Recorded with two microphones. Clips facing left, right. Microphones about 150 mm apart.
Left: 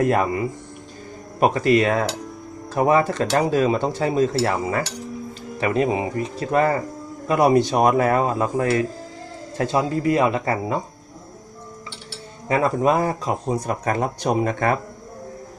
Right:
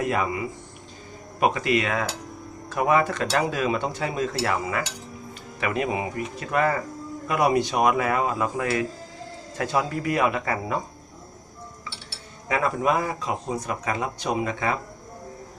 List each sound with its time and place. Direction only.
0.0 s a man's voice: 45° left (ahead or behind)
12.5 s speech: 30° left (ahead or behind); by 14.8 s 50° left (ahead or behind)